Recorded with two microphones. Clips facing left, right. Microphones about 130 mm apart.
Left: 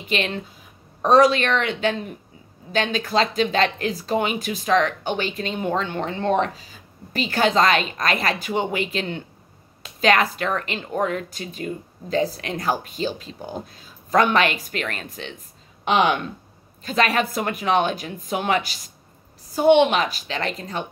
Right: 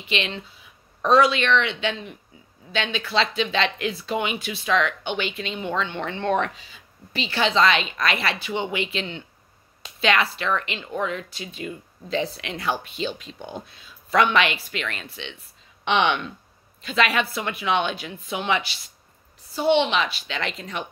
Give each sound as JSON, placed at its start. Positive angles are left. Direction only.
{"t": 0.0, "sound": "speech", "side_deg": 45}